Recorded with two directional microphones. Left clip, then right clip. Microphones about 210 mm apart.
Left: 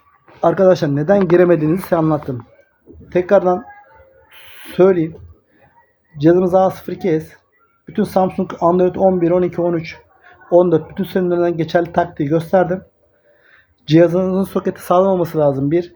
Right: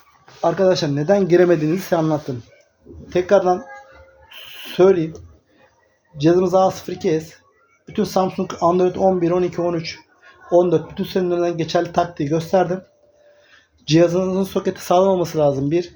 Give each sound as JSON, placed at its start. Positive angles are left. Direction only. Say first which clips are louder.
{"t": 0.4, "sound": "speech", "louder": "left 4 dB", "side_deg": 50}
{"t": 1.0, "sound": "speech", "louder": "left 2 dB", "side_deg": 25}
{"t": 3.1, "sound": "speech", "louder": "left 2 dB", "side_deg": 35}
{"t": 4.3, "sound": "owl", "louder": "right 3 dB", "side_deg": 35}
{"t": 6.1, "sound": "speech", "louder": "left 3 dB", "side_deg": 35}
{"t": 13.8, "sound": "speech", "louder": "left 3 dB", "side_deg": 35}